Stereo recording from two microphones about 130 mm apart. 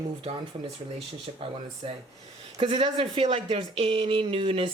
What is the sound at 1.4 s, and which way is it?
Speech, 45° right (ahead or behind).